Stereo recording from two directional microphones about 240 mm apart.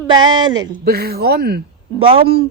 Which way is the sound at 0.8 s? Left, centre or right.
Right.